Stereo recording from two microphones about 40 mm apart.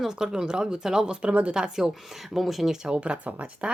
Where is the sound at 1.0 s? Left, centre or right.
Right.